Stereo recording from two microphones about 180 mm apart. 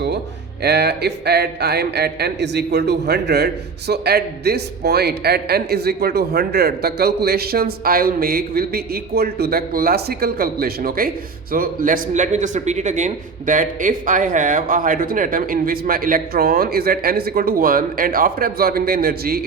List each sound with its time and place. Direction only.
0.6 s a man's voice: 65° right (ahead or behind)